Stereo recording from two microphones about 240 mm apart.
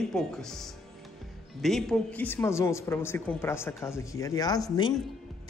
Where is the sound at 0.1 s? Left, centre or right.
Centre.